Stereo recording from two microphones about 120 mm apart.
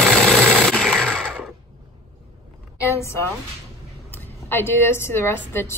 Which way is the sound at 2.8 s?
25° left (ahead or behind).